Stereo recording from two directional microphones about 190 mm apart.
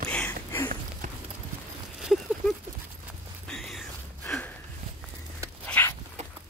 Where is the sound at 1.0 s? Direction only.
45° right (ahead or behind).